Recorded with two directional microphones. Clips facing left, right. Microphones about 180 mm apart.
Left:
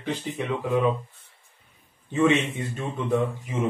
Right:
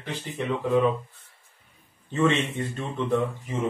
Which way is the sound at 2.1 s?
15° left (ahead or behind).